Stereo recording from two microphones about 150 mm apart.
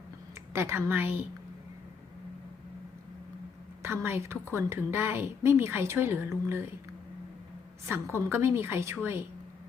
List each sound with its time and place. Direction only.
0.5 s a woman's voice: 15° right (ahead or behind)
3.8 s a woman's voice: 15° right (ahead or behind)
7.9 s a woman's voice: 15° right (ahead or behind)